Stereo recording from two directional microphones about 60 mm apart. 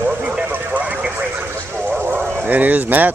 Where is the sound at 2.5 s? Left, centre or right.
Right.